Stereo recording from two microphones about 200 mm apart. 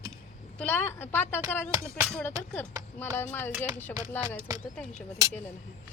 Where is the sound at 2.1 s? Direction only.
5° left (ahead or behind).